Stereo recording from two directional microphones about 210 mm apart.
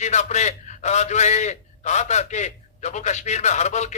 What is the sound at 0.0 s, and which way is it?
A man's voice, 35° left (ahead or behind).